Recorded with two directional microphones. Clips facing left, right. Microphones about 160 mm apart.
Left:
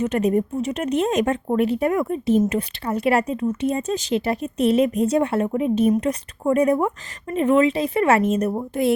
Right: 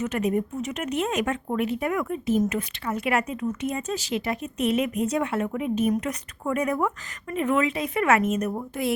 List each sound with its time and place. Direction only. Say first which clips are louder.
0.0 s speech: left 5 dB; 35° left (ahead or behind)